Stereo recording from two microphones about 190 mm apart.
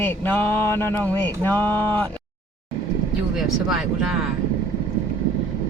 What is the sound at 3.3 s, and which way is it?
Speech, centre (ahead or behind).